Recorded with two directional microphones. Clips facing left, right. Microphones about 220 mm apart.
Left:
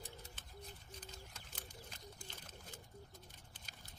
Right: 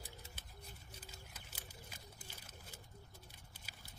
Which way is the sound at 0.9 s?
10° right (ahead or behind).